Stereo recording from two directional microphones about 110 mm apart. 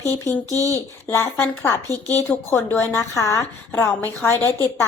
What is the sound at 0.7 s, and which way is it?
A woman's voice, 25° left (ahead or behind).